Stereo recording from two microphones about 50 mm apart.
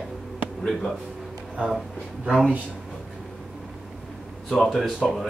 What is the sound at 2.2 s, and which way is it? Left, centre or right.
Speech, centre.